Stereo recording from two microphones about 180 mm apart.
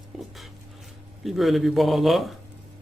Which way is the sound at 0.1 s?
Centre (ahead or behind).